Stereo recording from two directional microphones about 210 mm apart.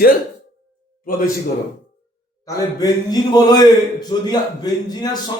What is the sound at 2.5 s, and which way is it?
A man's voice, 20° left (ahead or behind).